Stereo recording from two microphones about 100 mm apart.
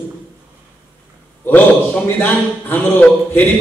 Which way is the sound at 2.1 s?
20° left (ahead or behind).